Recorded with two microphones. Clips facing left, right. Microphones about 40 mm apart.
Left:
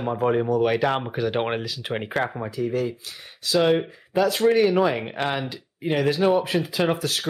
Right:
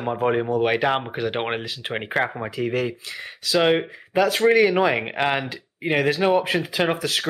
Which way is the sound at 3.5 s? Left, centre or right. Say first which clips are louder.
Right 1 dB; right.